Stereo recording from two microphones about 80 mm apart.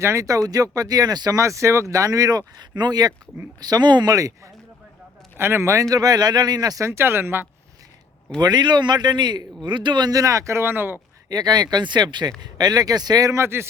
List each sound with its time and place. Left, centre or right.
0.0 s speech: right
1.4 s speech: right
2.6 s a man's voice: right
5.4 s speech: right
8.4 s a man's voice: right
11.3 s a man's voice: right
12.4 s a man's voice: right
13.3 s speech: right